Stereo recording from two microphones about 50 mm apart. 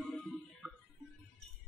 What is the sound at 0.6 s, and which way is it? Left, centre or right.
Music, centre.